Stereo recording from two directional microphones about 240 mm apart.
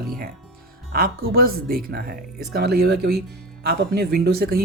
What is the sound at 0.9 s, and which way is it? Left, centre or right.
Speech, right.